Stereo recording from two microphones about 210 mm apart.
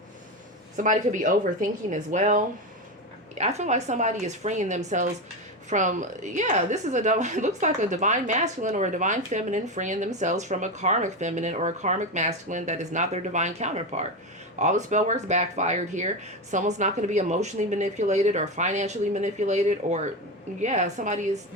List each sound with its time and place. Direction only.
0.8 s a woman's voice: 40° right (ahead or behind)